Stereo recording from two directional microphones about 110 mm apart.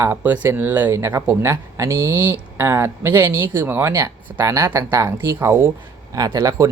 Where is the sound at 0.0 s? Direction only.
20° right (ahead or behind).